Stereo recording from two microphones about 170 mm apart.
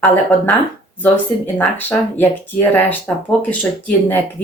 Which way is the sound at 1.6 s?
10° left (ahead or behind).